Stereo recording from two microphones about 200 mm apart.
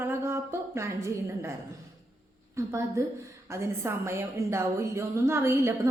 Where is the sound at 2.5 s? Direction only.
15° right (ahead or behind).